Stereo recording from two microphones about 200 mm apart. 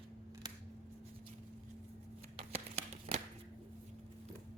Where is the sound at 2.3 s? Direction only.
35° right (ahead or behind).